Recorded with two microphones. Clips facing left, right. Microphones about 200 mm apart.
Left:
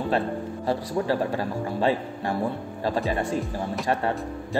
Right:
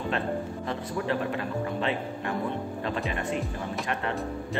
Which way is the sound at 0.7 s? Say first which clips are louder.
Left 6 dB; 35° left (ahead or behind).